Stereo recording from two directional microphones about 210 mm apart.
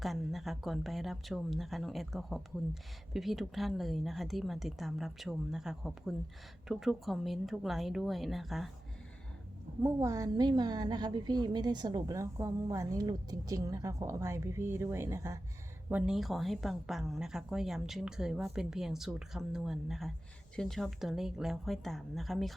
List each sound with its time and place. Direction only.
0.0 s a woman's voice: centre (ahead or behind)
9.8 s a woman's voice: 15° right (ahead or behind); by 22.5 s centre (ahead or behind)